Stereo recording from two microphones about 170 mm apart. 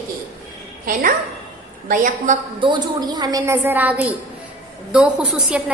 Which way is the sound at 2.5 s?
25° right (ahead or behind).